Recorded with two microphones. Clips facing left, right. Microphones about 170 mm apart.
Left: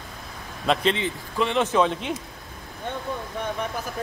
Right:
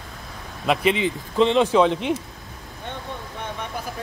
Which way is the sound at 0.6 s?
15° right (ahead or behind).